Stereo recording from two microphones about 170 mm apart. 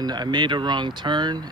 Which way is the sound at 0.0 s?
25° right (ahead or behind).